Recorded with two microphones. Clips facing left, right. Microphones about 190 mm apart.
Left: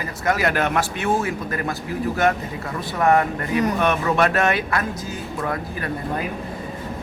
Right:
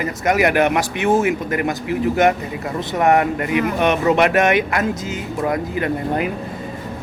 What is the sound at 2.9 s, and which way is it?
Speech, 20° right (ahead or behind).